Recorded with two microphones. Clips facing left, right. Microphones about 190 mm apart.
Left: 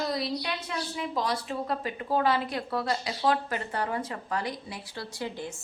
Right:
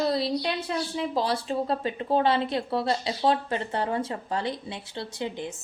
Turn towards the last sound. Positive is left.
turn(degrees=-20)  # may be behind; listen again after turning